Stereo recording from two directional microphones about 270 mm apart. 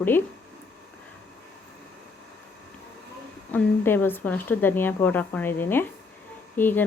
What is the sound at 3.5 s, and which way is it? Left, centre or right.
Speech, centre.